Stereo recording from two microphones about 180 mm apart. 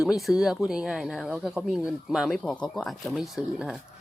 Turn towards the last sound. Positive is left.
turn(degrees=0)  # may be behind; listen again after turning